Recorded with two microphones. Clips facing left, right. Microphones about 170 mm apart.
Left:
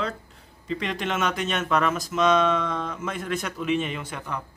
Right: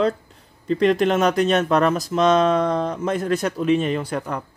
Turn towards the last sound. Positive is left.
turn(degrees=-35)  # may be behind; listen again after turning